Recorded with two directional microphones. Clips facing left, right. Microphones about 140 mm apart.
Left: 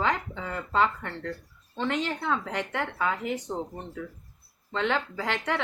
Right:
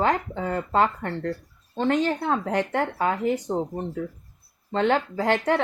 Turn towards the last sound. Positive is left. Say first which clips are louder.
# right 7 dB
turn(degrees=-45)  # may be behind; listen again after turning